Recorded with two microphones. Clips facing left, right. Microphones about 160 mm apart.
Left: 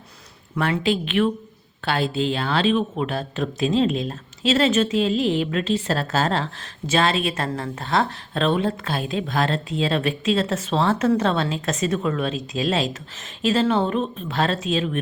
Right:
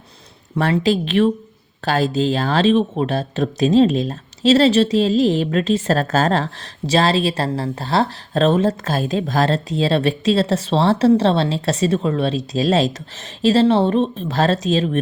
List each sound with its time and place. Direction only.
0.5 s speech: 35° right (ahead or behind)